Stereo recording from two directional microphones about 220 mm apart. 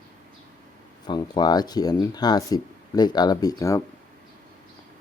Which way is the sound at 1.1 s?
20° left (ahead or behind).